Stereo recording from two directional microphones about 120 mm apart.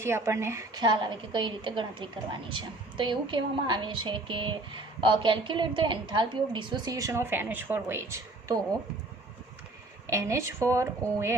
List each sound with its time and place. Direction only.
0.0 s a woman's voice: 20° right (ahead or behind)
0.7 s a woman's voice: 40° right (ahead or behind); by 8.5 s 20° right (ahead or behind)
10.1 s a woman's voice: 25° right (ahead or behind)